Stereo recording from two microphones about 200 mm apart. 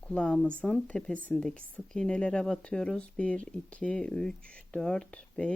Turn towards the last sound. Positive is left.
turn(degrees=5)  # may be behind; listen again after turning